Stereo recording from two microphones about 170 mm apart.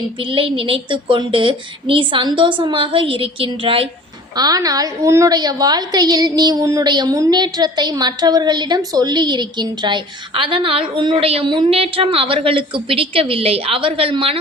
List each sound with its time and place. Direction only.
0.2 s a woman's voice: 30° right (ahead or behind)
4.4 s a woman's voice: 20° right (ahead or behind)